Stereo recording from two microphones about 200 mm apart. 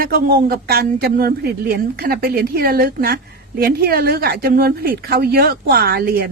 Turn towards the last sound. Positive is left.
turn(degrees=-50)  # may be behind; listen again after turning